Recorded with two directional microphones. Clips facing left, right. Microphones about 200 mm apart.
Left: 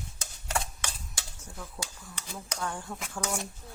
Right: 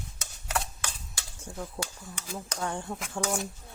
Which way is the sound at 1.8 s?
25° right (ahead or behind).